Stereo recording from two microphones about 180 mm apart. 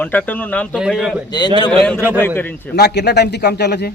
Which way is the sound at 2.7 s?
65° left (ahead or behind).